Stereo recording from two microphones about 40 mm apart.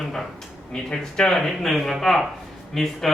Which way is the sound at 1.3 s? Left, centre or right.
Centre.